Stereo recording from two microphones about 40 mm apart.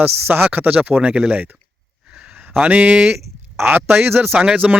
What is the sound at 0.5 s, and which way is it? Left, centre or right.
Speech, right.